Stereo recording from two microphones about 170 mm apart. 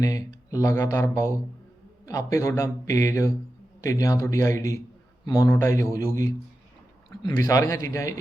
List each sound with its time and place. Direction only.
0.0 s speech: 20° left (ahead or behind)